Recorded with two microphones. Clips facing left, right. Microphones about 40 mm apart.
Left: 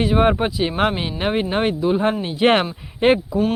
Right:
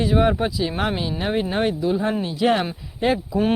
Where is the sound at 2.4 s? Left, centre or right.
Left.